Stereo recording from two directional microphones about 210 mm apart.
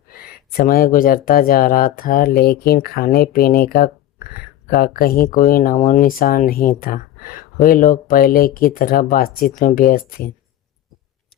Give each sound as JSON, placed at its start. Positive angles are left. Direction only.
{"t": 0.1, "sound": "speech", "side_deg": 45}